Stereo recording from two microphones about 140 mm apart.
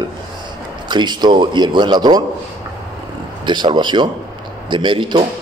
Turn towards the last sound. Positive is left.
turn(degrees=-35)  # may be behind; listen again after turning